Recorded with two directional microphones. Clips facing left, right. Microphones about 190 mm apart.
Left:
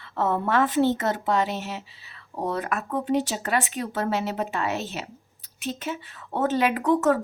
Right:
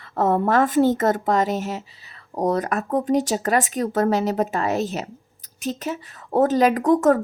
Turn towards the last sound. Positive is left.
turn(degrees=-45)  # may be behind; listen again after turning